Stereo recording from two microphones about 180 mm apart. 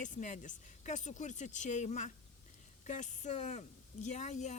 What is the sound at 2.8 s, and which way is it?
Speech, 40° left (ahead or behind).